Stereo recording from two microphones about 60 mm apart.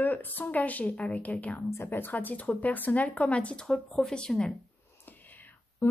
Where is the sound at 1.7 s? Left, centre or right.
Left; by 4.5 s centre.